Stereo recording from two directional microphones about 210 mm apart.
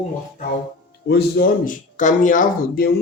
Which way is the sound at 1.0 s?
50° left (ahead or behind).